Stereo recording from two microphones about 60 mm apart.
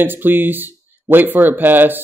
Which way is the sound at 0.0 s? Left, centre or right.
Right.